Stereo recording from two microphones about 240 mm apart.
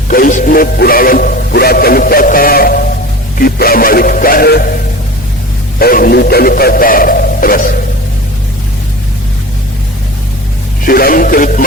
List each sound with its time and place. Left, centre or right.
0.1 s speech: left
5.8 s speech: left
10.8 s speech: left